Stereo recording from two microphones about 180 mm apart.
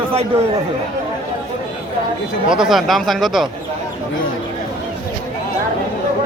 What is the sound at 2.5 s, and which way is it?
Speech, centre (ahead or behind).